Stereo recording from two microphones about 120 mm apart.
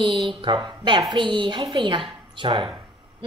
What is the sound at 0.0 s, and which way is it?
A woman's voice, 40° right (ahead or behind).